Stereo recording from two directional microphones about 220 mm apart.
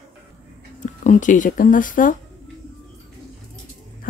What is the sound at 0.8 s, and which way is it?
Speech, 35° left (ahead or behind).